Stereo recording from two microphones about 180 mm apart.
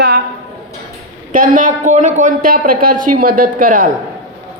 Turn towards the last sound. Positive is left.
turn(degrees=-50)  # may be behind; listen again after turning